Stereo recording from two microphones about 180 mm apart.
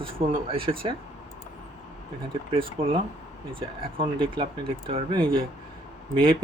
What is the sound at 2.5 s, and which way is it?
Speech, 30° right (ahead or behind).